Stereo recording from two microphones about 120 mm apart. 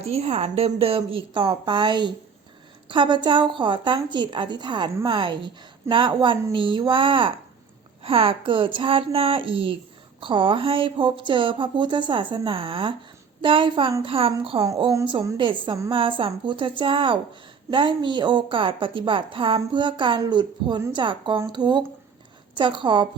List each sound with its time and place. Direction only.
0.0 s a woman's voice: 60° right (ahead or behind); by 23.0 s 40° right (ahead or behind)